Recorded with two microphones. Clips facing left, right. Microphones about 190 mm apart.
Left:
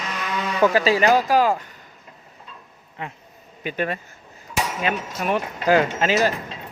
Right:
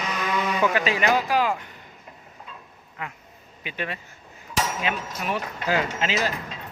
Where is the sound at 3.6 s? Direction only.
45° left (ahead or behind).